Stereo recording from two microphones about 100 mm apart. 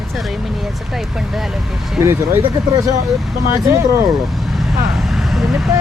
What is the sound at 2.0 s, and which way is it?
Speech, 25° right (ahead or behind).